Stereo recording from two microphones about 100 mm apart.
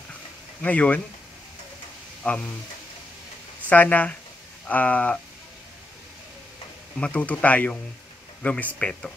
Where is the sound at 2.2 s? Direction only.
15° left (ahead or behind).